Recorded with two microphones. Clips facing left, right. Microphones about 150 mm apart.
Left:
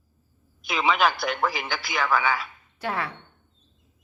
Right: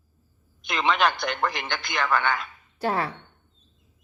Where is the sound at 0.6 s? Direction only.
5° left (ahead or behind).